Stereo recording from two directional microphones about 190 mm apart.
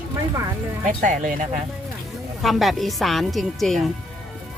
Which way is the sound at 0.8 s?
40° right (ahead or behind).